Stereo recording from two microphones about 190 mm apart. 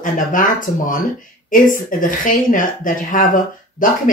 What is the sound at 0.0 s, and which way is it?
Speech, 45° left (ahead or behind).